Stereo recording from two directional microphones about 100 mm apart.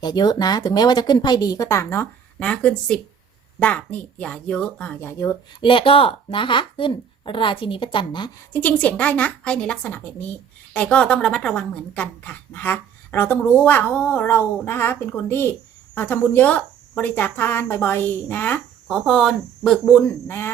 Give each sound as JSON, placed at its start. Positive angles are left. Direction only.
{"t": 0.0, "sound": "speech", "side_deg": 45}
{"t": 5.5, "sound": "speech", "side_deg": 60}
{"t": 8.5, "sound": "a woman's voice", "side_deg": 15}
{"t": 18.9, "sound": "speech", "side_deg": 0}
{"t": 19.8, "sound": "a woman's voice", "side_deg": 15}